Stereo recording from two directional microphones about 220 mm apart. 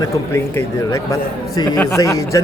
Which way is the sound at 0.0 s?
15° left (ahead or behind).